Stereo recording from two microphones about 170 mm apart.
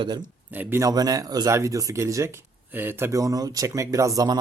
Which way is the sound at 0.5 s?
10° right (ahead or behind).